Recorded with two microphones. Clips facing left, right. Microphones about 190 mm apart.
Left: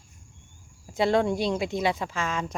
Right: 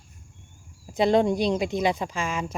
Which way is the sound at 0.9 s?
20° right (ahead or behind).